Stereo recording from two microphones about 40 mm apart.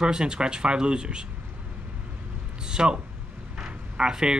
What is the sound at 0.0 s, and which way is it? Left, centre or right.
Speech, right.